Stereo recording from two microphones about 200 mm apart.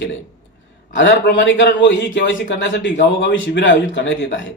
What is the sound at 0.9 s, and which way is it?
Speech, 65° left (ahead or behind).